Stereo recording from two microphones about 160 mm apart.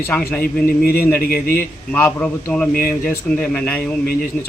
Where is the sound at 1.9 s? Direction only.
10° left (ahead or behind).